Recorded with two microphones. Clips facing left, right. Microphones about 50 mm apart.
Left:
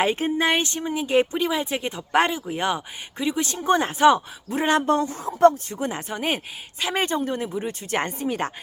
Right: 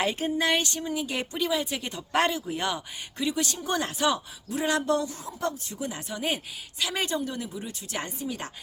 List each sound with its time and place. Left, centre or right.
0.0 s speech: left